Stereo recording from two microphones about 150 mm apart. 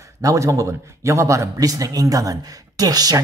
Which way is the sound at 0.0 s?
20° right (ahead or behind).